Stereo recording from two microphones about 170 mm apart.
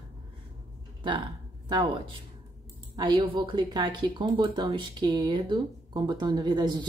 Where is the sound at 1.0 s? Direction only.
30° right (ahead or behind).